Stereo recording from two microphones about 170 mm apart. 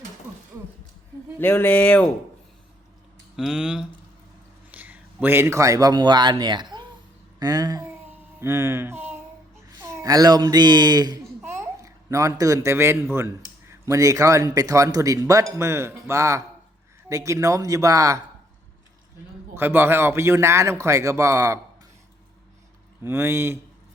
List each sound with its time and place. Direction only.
1.4 s speech: 10° left (ahead or behind)
3.3 s a man's voice: 5° right (ahead or behind); by 18.2 s 20° right (ahead or behind)
19.5 s a man's voice: 15° right (ahead or behind)
23.0 s a man's voice: 15° right (ahead or behind)